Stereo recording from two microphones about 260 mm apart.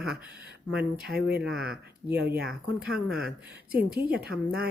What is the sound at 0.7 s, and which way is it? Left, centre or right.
Speech, centre.